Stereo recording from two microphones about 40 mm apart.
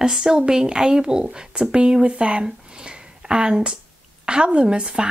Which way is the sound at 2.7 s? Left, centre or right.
Right.